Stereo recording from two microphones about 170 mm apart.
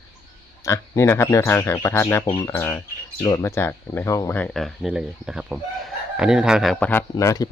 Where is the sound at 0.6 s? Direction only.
15° left (ahead or behind).